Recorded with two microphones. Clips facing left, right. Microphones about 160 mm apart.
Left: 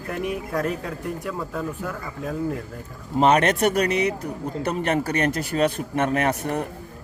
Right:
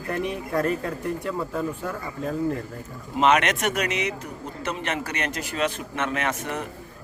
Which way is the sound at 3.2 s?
35° left (ahead or behind).